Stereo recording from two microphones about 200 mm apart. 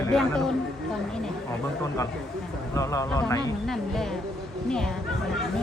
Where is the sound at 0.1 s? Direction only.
5° left (ahead or behind).